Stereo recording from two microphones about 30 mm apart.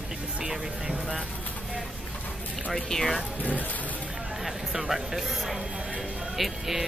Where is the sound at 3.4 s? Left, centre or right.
Left.